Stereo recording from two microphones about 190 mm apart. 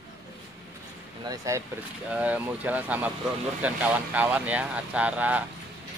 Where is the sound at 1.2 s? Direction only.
15° right (ahead or behind).